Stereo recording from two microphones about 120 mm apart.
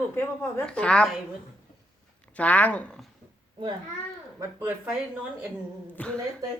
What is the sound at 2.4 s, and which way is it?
Speech, 10° left (ahead or behind).